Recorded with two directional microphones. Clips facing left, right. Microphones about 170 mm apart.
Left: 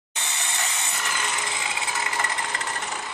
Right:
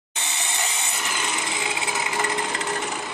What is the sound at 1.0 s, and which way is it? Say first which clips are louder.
Tools: right 2 dB; 20° right (ahead or behind).